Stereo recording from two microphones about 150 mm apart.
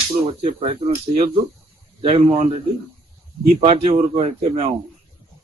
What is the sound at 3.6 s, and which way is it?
Speech, 45° right (ahead or behind).